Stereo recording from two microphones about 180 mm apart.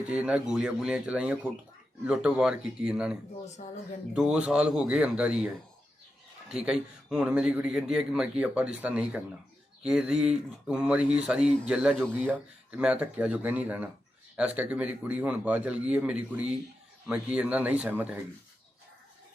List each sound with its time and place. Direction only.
0.1 s speech: 5° right (ahead or behind)
3.6 s speech: 45° left (ahead or behind)
4.1 s speech: 5° right (ahead or behind)
6.5 s a man's voice: 5° right (ahead or behind)